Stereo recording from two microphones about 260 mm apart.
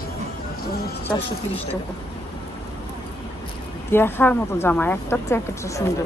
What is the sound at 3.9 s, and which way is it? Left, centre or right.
A woman's voice, centre.